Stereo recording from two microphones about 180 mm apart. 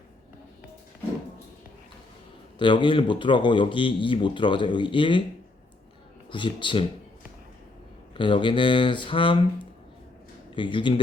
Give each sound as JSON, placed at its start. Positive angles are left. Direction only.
{"t": 2.6, "sound": "speech", "side_deg": 25}
{"t": 6.3, "sound": "speech", "side_deg": 25}
{"t": 8.1, "sound": "speech", "side_deg": 30}
{"t": 10.5, "sound": "speech", "side_deg": 25}